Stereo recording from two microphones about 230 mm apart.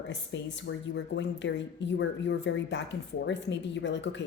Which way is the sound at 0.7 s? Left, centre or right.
Left.